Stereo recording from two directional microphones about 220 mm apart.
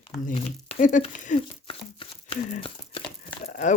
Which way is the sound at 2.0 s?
25° left (ahead or behind).